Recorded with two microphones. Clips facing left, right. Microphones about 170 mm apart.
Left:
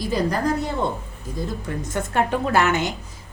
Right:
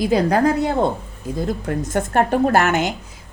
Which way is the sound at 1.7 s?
50° right (ahead or behind).